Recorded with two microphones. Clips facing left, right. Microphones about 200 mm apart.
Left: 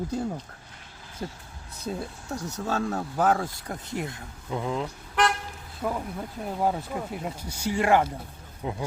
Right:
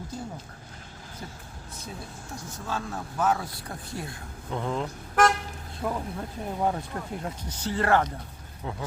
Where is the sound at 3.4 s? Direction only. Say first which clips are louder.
Left 3 dB; 20° left (ahead or behind).